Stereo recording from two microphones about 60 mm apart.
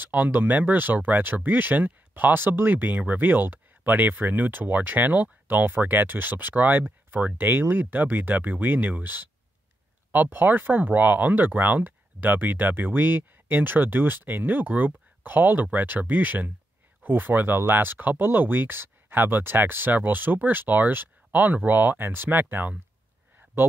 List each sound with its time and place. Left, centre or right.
0.0 s speech: right